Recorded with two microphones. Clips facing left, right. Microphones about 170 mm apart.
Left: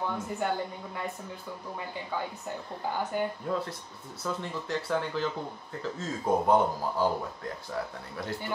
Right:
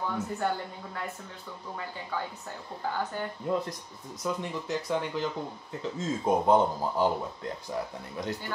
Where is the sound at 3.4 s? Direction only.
15° right (ahead or behind).